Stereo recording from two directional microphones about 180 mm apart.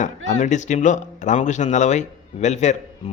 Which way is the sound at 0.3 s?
40° left (ahead or behind).